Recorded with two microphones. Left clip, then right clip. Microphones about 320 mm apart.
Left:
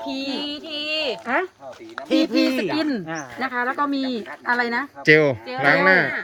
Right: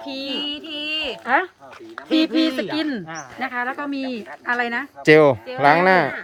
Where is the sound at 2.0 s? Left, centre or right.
Left.